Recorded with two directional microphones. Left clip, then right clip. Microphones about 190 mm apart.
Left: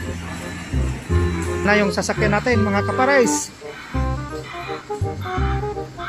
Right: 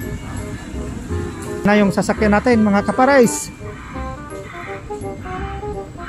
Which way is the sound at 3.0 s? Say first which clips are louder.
Right 4 dB; 20° right (ahead or behind).